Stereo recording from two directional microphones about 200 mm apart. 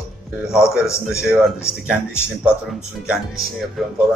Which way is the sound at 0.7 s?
15° left (ahead or behind).